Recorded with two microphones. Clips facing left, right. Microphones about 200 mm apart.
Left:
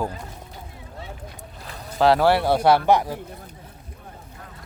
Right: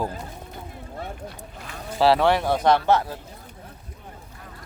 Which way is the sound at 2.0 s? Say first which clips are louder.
Left 1 dB; centre (ahead or behind).